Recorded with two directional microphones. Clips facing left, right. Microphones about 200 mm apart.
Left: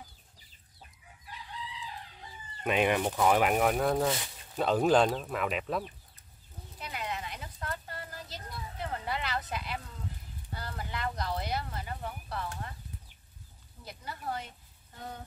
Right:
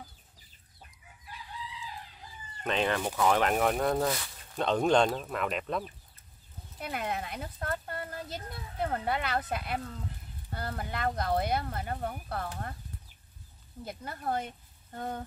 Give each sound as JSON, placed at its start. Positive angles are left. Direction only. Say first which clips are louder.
{"t": 2.6, "sound": "speech", "louder": "left 2 dB", "side_deg": 10}
{"t": 6.8, "sound": "a sound", "louder": "right 4 dB", "side_deg": -55}
{"t": 8.8, "sound": "speech", "louder": "right 5 dB", "side_deg": -50}
{"t": 13.8, "sound": "speech", "louder": "right 4 dB", "side_deg": -50}